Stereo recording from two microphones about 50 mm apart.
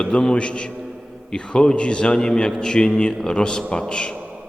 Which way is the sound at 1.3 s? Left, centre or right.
Centre.